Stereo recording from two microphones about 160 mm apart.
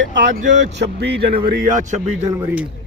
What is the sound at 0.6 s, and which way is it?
Speech, 90° right.